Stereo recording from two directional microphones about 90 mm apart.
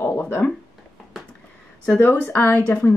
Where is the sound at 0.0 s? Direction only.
25° left (ahead or behind).